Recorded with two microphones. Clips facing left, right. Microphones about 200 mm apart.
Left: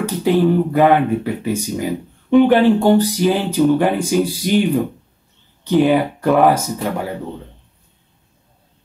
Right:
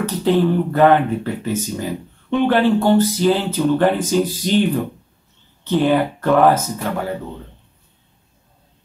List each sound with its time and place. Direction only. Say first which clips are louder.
0.0 s speech: left 1 dB; 10° left (ahead or behind)